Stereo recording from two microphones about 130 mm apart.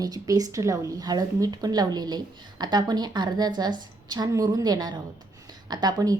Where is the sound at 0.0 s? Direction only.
30° right (ahead or behind).